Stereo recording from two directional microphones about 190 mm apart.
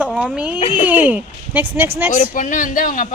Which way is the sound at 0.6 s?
30° left (ahead or behind).